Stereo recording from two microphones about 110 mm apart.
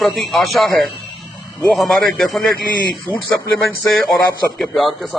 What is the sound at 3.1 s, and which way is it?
Speech, 15° left (ahead or behind).